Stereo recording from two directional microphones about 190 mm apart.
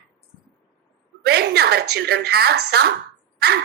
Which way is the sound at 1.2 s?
55° right (ahead or behind).